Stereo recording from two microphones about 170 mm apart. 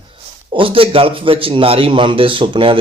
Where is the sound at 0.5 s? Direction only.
30° right (ahead or behind).